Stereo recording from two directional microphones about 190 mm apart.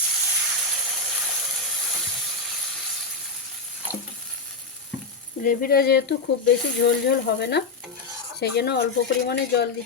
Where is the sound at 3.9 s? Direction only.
10° right (ahead or behind).